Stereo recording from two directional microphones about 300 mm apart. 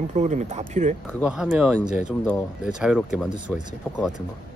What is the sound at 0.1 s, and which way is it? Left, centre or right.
Speech, right.